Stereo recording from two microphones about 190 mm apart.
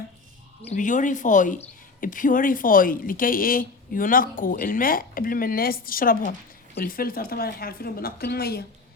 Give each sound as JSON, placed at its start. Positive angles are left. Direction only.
{"t": 0.7, "sound": "speech", "side_deg": 40}